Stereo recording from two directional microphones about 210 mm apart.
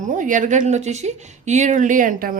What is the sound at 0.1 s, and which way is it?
Speech, 35° right (ahead or behind).